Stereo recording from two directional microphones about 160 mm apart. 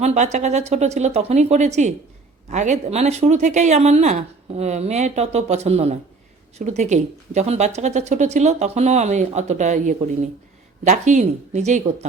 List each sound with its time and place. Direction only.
0.0 s speech: 45° right (ahead or behind)